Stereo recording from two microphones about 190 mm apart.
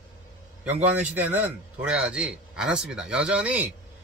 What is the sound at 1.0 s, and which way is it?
A man's voice, 10° right (ahead or behind).